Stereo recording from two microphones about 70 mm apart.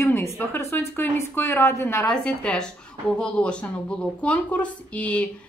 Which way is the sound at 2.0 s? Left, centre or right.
Centre.